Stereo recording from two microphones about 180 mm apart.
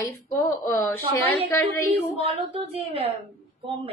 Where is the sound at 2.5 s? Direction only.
35° right (ahead or behind).